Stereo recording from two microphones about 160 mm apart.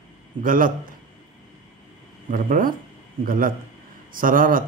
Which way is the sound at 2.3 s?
60° right (ahead or behind).